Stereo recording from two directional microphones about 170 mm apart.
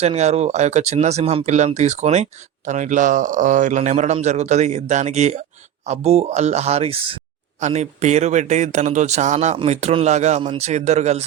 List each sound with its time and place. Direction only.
0.0 s speech: 40° right (ahead or behind)